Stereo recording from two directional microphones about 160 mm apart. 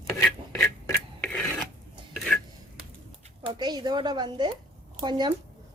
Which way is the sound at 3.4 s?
30° right (ahead or behind).